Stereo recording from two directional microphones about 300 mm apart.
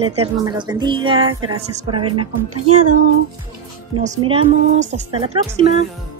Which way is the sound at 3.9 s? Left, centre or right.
Centre.